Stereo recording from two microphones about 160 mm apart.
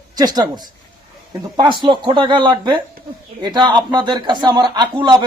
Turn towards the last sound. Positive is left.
turn(degrees=-30)  # may be behind; listen again after turning